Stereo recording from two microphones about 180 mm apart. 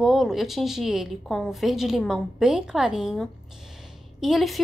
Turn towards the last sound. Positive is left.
turn(degrees=0)  # may be behind; listen again after turning